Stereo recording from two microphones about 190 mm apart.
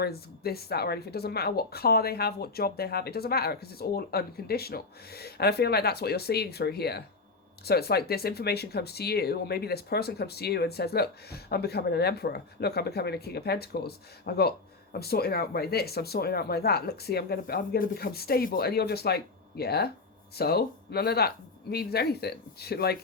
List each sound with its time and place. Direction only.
0.0 s speech: 55° left (ahead or behind)